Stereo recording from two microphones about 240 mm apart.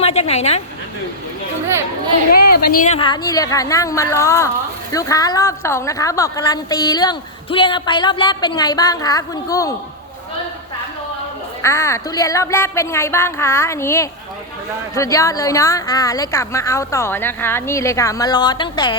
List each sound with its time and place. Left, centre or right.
0.0 s a woman's voice: left
2.3 s speech: left; by 9.7 s centre
11.6 s speech: centre